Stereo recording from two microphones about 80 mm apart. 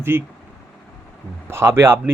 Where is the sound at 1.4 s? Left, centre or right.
Right.